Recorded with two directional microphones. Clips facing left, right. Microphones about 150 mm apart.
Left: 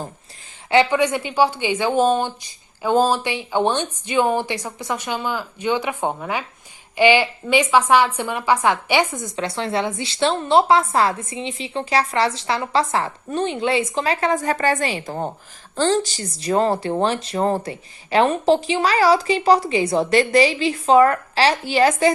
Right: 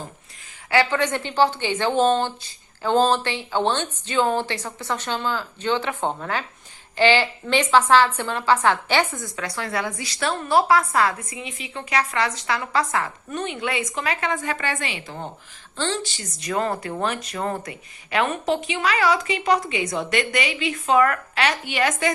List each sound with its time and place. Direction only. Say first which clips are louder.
0.7 s a woman's voice: left 4 dB; 15° left (ahead or behind); by 22.1 s 30° left (ahead or behind)